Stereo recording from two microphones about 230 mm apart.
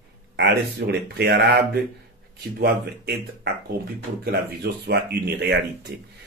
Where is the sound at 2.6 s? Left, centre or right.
Right.